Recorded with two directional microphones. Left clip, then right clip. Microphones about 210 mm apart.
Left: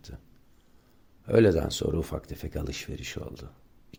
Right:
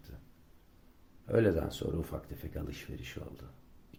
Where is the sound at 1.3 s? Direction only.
45° left (ahead or behind).